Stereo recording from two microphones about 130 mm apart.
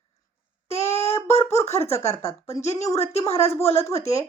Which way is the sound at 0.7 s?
50° left (ahead or behind).